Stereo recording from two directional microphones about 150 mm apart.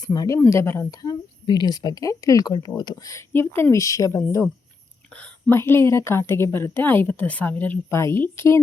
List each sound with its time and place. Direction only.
0.0 s a woman's voice: 25° left (ahead or behind)